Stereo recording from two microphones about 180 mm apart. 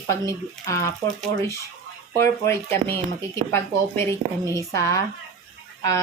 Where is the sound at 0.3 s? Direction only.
15° left (ahead or behind).